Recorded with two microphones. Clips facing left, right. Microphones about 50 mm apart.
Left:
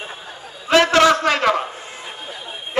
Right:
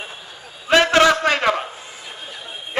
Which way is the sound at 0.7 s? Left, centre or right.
Right.